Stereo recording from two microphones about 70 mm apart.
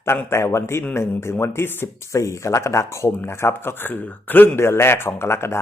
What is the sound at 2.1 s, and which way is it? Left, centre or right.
Speech, left.